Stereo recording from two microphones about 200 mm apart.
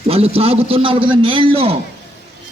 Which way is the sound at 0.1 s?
30° right (ahead or behind).